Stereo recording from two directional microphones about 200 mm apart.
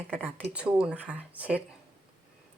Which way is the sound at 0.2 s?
5° right (ahead or behind).